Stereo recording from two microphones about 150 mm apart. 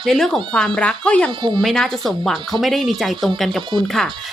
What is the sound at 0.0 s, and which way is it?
Speech, centre (ahead or behind).